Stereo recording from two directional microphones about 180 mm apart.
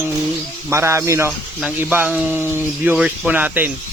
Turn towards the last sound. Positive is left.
turn(degrees=-10)  # may be behind; listen again after turning